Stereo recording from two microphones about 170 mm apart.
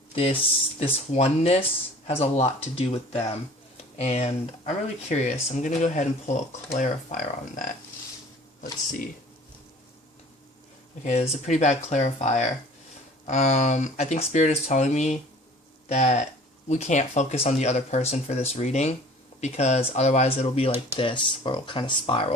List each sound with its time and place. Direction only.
0.8 s speech: 40° left (ahead or behind)
11.0 s speech: 40° left (ahead or behind)